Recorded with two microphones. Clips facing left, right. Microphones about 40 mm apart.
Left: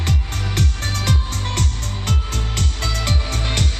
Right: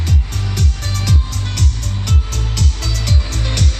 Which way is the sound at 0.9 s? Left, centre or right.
Left.